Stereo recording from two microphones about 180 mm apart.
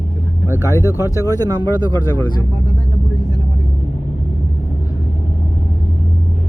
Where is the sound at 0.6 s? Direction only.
15° left (ahead or behind).